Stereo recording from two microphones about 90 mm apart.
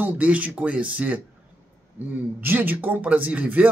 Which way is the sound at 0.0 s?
15° right (ahead or behind).